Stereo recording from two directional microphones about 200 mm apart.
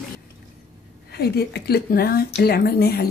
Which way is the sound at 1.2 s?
55° left (ahead or behind).